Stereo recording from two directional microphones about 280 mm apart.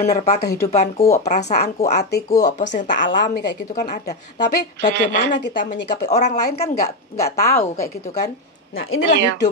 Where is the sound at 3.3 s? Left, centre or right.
Left.